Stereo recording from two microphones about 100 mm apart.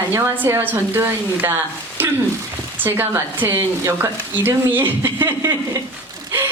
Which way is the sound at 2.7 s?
20° right (ahead or behind).